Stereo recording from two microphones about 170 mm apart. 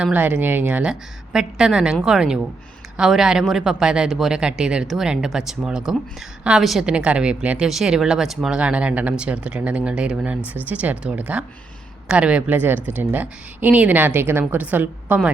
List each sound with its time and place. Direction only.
0.0 s a woman's voice: 10° right (ahead or behind)